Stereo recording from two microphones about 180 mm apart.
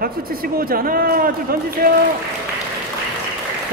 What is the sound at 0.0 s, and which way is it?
A man's voice, 55° right (ahead or behind).